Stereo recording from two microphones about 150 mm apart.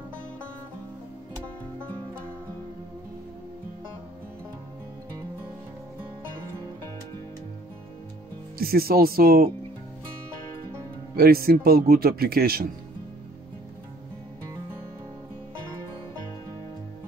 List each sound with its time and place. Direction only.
8.5 s speech: 90° right
11.1 s speech: 90° right